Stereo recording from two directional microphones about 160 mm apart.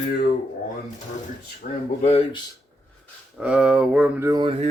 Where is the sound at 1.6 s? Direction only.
40° left (ahead or behind).